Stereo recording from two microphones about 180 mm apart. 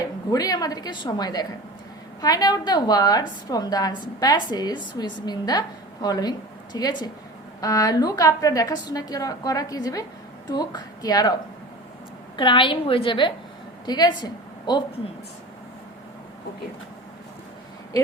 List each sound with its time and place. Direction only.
0.0 s a woman's voice: 20° left (ahead or behind)
12.4 s a woman's voice: 25° left (ahead or behind)